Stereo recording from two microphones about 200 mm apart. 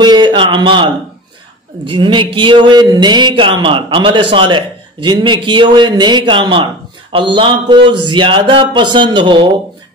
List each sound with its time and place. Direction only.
0.0 s speech: 20° right (ahead or behind)